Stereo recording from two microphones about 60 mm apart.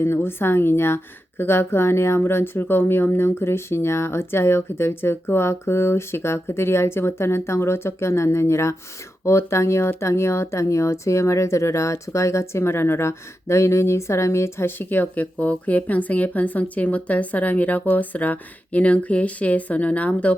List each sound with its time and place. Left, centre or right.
0.0 s a woman's voice: left